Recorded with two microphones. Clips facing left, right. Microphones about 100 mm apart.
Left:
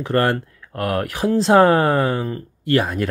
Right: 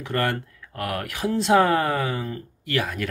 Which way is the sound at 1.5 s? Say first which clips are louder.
Left 5 dB; 45° left (ahead or behind).